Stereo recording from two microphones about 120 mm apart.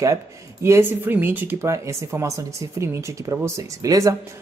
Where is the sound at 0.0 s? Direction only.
25° right (ahead or behind).